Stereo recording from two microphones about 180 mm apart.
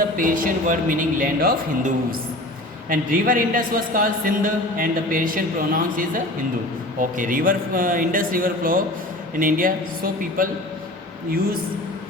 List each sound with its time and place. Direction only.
0.2 s a man's voice: 50° right (ahead or behind)